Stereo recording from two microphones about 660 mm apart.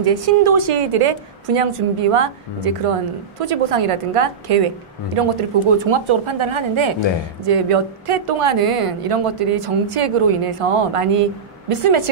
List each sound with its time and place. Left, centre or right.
0.0 s a woman's voice: right